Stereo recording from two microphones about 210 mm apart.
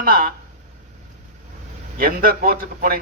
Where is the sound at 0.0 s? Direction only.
40° right (ahead or behind).